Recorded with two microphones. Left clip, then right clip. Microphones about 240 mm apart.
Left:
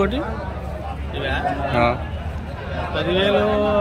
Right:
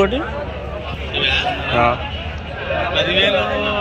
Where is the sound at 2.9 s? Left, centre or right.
Left.